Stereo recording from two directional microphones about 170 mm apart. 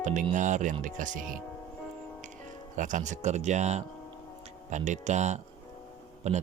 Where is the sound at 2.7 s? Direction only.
50° right (ahead or behind).